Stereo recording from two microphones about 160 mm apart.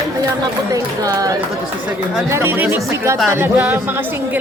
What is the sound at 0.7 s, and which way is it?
Speech, 20° right (ahead or behind).